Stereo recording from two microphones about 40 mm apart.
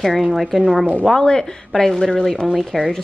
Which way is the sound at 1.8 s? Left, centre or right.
Centre.